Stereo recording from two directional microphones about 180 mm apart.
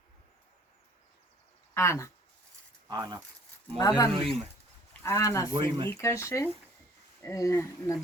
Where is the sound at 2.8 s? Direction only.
20° right (ahead or behind).